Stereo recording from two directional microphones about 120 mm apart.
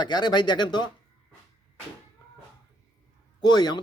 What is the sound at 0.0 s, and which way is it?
Speech, 35° left (ahead or behind).